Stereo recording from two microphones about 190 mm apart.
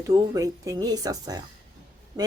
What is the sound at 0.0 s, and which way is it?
A woman's voice, 15° right (ahead or behind).